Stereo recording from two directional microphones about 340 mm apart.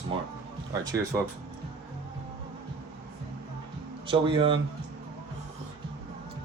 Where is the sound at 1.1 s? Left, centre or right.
Centre.